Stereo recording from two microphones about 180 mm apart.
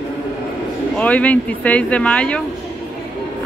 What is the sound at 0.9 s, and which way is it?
A woman's voice, 10° left (ahead or behind).